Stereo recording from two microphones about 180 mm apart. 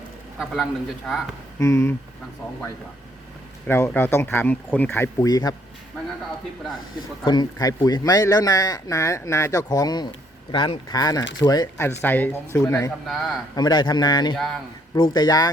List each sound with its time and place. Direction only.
0.3 s a man's voice: centre (ahead or behind)
1.5 s speech: 15° left (ahead or behind)
3.7 s speech: 15° left (ahead or behind)
7.3 s speech: 20° left (ahead or behind)
13.1 s a man's voice: centre (ahead or behind)
13.6 s speech: 25° left (ahead or behind)
14.3 s a man's voice: centre (ahead or behind)
14.9 s speech: 25° left (ahead or behind)